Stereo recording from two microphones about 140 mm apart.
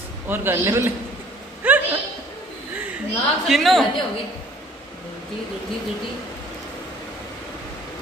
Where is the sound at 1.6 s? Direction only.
10° right (ahead or behind).